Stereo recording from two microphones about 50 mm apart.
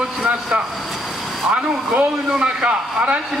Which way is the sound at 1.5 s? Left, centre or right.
Centre.